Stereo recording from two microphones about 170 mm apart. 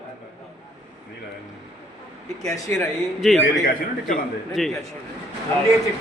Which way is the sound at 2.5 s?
15° left (ahead or behind).